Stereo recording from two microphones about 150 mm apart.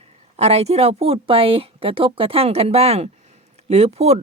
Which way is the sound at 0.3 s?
45° right (ahead or behind).